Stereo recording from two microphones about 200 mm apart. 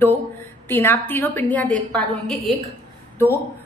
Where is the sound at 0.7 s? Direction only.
10° left (ahead or behind).